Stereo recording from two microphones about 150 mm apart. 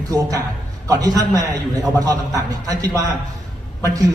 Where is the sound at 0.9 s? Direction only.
25° right (ahead or behind).